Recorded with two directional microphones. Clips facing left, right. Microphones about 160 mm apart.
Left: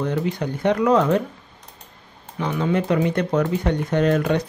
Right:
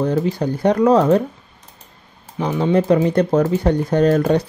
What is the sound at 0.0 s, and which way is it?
Speech, 35° right (ahead or behind).